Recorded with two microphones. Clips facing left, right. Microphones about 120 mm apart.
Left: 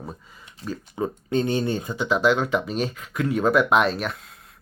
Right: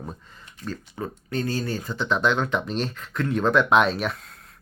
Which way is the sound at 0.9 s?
20° left (ahead or behind).